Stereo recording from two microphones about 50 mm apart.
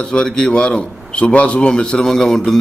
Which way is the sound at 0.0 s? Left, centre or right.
Centre.